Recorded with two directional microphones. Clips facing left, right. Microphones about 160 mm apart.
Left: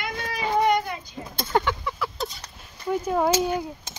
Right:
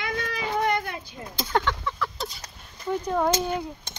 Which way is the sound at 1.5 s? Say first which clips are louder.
Left 2 dB; 10° left (ahead or behind).